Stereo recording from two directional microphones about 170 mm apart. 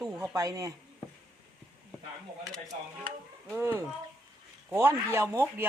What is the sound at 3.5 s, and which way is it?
Speech, 15° right (ahead or behind).